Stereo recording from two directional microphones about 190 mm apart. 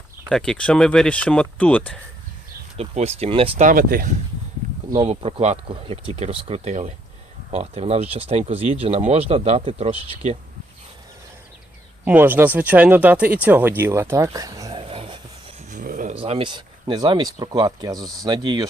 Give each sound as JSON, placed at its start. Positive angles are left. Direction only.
{"t": 0.3, "sound": "speech", "side_deg": 5}
{"t": 2.7, "sound": "speech", "side_deg": -35}
{"t": 3.6, "sound": "speech", "side_deg": -45}
{"t": 4.9, "sound": "speech", "side_deg": -30}
{"t": 12.0, "sound": "speech", "side_deg": -10}
{"t": 15.7, "sound": "a sound", "side_deg": -45}
{"t": 16.1, "sound": "speech", "side_deg": -30}